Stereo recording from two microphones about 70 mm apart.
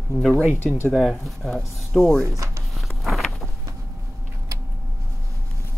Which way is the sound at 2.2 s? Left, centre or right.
Right.